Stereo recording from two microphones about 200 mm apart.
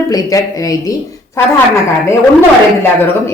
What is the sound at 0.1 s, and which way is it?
Speech, 15° left (ahead or behind).